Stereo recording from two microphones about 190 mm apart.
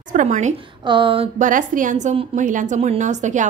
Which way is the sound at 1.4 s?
45° right (ahead or behind).